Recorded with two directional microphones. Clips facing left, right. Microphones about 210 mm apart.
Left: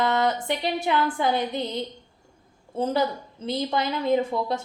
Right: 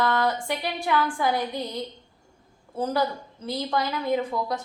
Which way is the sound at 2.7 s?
25° left (ahead or behind).